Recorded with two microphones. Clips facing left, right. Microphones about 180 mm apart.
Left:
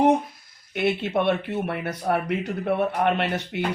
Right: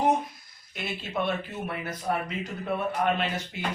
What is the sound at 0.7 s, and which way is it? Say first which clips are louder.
Speech: left 10 dB; 65° left (ahead or behind).